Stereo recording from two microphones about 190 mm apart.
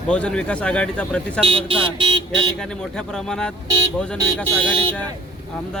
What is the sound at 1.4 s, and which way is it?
Speech, 30° right (ahead or behind).